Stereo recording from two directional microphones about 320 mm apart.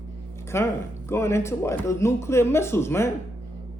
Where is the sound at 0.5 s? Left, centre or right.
Centre.